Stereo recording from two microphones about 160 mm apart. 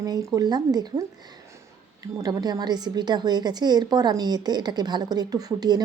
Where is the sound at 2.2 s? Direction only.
25° right (ahead or behind).